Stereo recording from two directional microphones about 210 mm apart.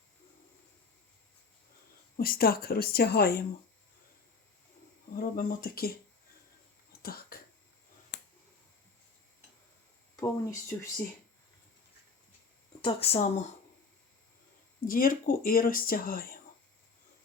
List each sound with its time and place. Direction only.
2.1 s speech: 45° left (ahead or behind)
5.1 s speech: 45° left (ahead or behind)
7.0 s a sound: 45° left (ahead or behind)
8.1 s finger snapping: 55° left (ahead or behind)
10.2 s speech: 15° left (ahead or behind)
12.8 s speech: 30° left (ahead or behind)
14.8 s speech: 40° left (ahead or behind)